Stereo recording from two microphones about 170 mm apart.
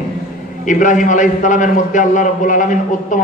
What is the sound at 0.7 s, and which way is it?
A man's voice, 50° left (ahead or behind).